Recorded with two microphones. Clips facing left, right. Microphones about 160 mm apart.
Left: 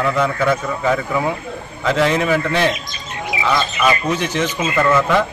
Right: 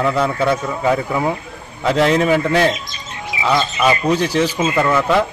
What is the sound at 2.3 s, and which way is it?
Speech, 15° right (ahead or behind).